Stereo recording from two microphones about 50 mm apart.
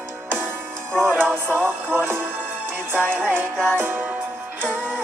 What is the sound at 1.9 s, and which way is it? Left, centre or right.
Music, right.